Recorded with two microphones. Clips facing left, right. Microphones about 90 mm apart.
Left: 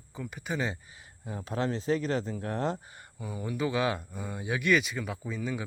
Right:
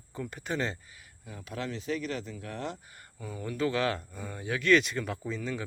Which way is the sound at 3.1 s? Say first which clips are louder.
Left 1 dB; 15° left (ahead or behind).